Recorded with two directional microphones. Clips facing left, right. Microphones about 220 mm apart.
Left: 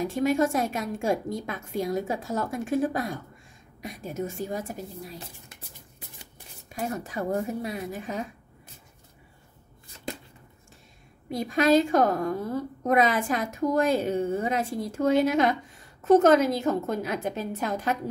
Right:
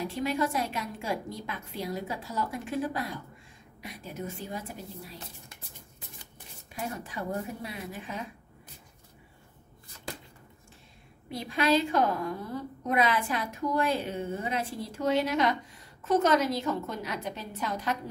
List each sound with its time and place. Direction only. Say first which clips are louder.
0.0 s a woman's voice: left 6 dB; 45° left (ahead or behind)
6.7 s a woman's voice: left 5 dB; 45° left (ahead or behind)
11.2 s a woman's voice: left 5 dB; 45° left (ahead or behind)